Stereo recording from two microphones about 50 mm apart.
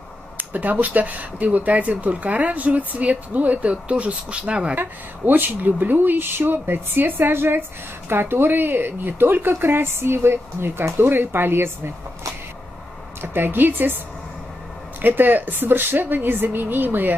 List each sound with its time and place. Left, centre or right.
0.4 s speech: right
4.7 s a woman's voice: right
13.2 s a woman's voice: right
15.0 s a woman's voice: right